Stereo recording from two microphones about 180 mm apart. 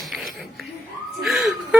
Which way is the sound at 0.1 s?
Centre (ahead or behind).